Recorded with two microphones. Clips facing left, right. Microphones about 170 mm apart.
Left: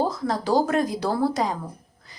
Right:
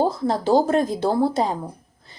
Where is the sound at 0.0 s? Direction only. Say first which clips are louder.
Right 4 dB; 30° right (ahead or behind).